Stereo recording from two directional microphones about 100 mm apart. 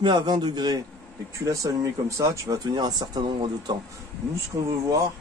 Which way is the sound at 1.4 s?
35° right (ahead or behind).